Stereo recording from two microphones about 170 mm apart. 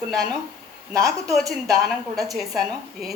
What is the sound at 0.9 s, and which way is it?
Speech, 20° right (ahead or behind).